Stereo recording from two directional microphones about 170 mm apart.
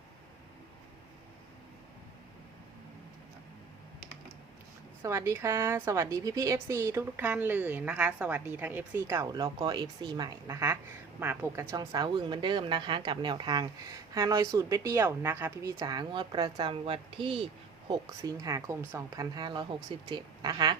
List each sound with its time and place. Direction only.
5.0 s a woman's voice: 15° right (ahead or behind)
15.8 s speech: 25° right (ahead or behind)
18.2 s speech: 20° right (ahead or behind)